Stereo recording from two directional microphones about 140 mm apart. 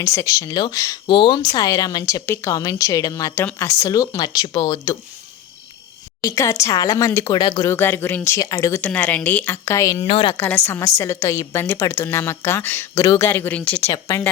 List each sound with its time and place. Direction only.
0.0 s speech: 20° left (ahead or behind)
6.2 s speech: 20° left (ahead or behind)
7.7 s speech: 15° left (ahead or behind)
10.0 s a woman's voice: 40° left (ahead or behind)
10.3 s speech: 15° left (ahead or behind)